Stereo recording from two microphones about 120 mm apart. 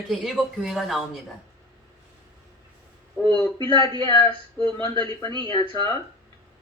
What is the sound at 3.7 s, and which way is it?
Speech, 40° right (ahead or behind).